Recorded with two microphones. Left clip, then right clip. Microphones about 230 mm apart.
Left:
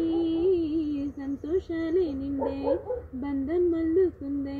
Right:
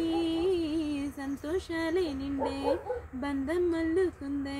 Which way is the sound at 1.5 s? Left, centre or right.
Centre.